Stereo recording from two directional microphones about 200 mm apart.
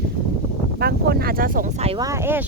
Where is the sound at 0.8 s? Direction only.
50° right (ahead or behind); by 2.0 s 30° right (ahead or behind).